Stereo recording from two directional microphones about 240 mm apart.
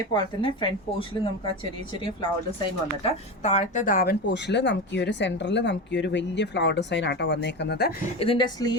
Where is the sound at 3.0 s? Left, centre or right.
Left.